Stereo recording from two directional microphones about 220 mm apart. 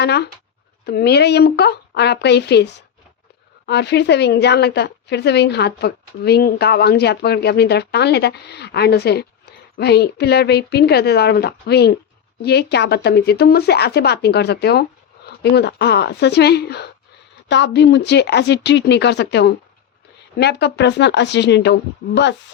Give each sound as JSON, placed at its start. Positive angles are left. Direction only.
{"t": 0.0, "sound": "a woman's voice", "side_deg": 50}
{"t": 3.7, "sound": "a woman's voice", "side_deg": 50}